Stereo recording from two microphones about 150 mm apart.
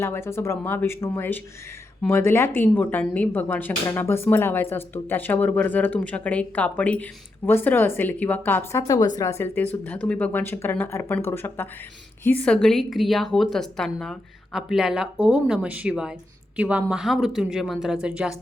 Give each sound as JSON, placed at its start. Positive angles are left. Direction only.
{"t": 0.0, "sound": "a woman's voice", "side_deg": 15}